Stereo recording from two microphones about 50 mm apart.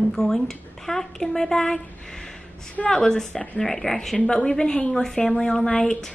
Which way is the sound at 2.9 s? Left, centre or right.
Centre.